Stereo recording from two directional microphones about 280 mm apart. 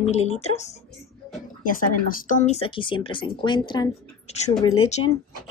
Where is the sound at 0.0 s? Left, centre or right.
Left.